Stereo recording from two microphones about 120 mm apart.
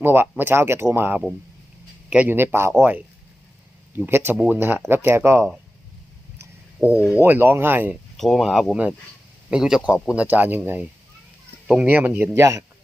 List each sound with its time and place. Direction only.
0.0 s speech: 20° right (ahead or behind)
3.9 s speech: 15° right (ahead or behind)
6.8 s speech: 20° right (ahead or behind)
8.1 s speech: centre (ahead or behind); by 12.6 s 25° right (ahead or behind)